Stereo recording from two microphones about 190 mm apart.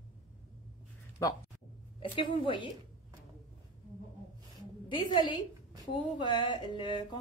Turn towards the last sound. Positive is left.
turn(degrees=25)  # may be behind; listen again after turning